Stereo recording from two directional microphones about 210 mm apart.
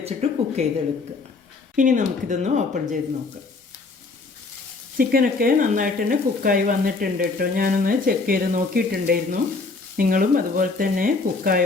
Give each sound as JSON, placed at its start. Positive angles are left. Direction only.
{"t": 0.0, "sound": "a sound", "side_deg": -30}
{"t": 1.7, "sound": "frying", "side_deg": -40}
{"t": 4.9, "sound": "speech", "side_deg": -45}
{"t": 10.0, "sound": "frying", "side_deg": -40}